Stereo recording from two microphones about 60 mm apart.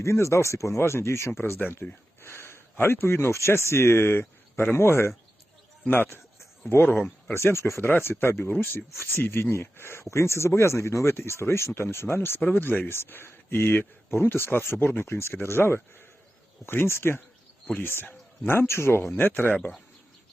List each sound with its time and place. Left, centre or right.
0.0 s speech: left
1.4 s speech: left
6.9 s speech: left
7.3 s speech: left
18.7 s speech: left